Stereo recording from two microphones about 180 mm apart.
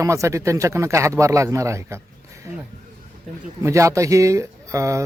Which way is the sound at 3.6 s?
15° right (ahead or behind).